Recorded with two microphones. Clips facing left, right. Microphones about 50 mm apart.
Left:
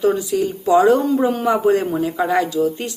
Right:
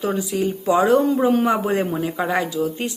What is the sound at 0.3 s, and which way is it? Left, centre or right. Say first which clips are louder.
A woman's voice: left 1 dB; right.